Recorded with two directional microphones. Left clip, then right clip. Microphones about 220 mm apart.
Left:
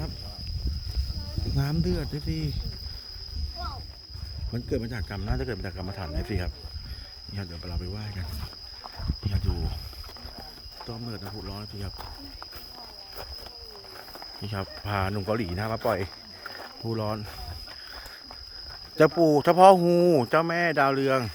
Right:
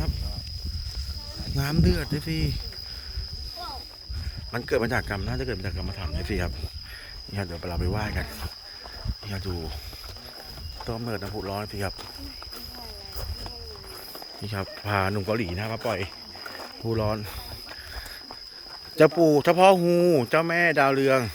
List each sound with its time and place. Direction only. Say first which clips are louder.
1.5 s speech: right 4 dB; 5° left (ahead or behind)
4.5 s speech: right 8 dB; centre (ahead or behind)
10.8 s speech: right 7 dB; 5° left (ahead or behind)
14.4 s speech: right 3 dB; 15° left (ahead or behind)
18.9 s speech: right 2 dB; 15° left (ahead or behind)